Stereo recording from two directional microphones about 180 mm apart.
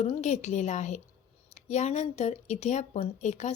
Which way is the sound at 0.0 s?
40° left (ahead or behind).